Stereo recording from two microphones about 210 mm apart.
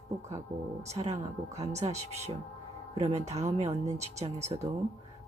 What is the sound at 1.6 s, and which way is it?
Speech, 30° right (ahead or behind).